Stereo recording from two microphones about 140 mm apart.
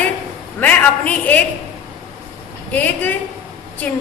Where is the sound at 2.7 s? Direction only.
10° left (ahead or behind).